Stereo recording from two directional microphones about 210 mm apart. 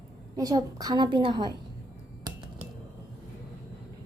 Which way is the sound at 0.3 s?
15° right (ahead or behind).